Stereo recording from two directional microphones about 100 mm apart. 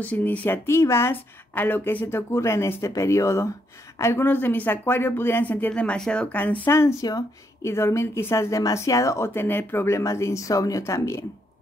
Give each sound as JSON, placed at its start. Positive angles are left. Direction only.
{"t": 0.0, "sound": "speech", "side_deg": 15}
{"t": 0.7, "sound": "speech", "side_deg": 25}
{"t": 6.6, "sound": "speech", "side_deg": 25}